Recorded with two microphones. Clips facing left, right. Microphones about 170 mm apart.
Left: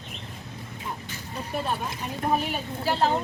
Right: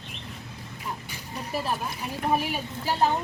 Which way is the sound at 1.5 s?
5° right (ahead or behind).